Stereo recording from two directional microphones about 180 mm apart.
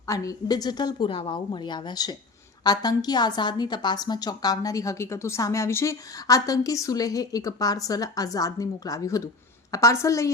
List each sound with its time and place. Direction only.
0.0 s a woman's voice: 20° left (ahead or behind)